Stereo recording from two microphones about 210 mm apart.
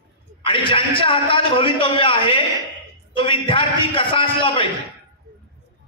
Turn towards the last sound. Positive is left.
turn(degrees=25)  # may be behind; listen again after turning